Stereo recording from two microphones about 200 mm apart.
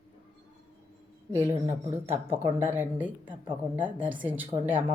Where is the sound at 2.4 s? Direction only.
10° right (ahead or behind).